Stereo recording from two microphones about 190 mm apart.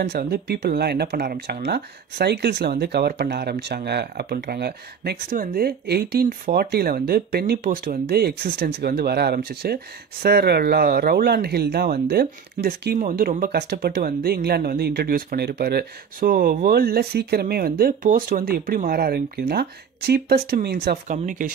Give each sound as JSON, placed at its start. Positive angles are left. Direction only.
{"t": 0.0, "sound": "speech", "side_deg": -60}